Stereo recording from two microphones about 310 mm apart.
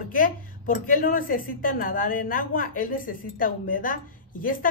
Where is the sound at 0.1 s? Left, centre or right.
Left.